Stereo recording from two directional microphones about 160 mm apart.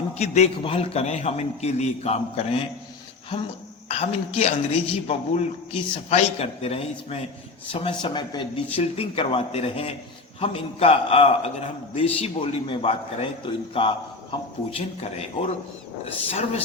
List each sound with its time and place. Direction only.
0.2 s a man's voice: 40° left (ahead or behind)
3.8 s a man's voice: 40° left (ahead or behind)